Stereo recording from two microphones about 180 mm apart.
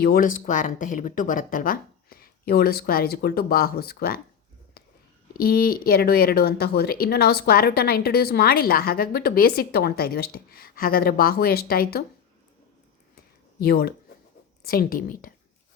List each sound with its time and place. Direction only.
0.0 s speech: 55° left (ahead or behind)
5.5 s speech: 55° left (ahead or behind)
13.6 s a woman's voice: 55° left (ahead or behind)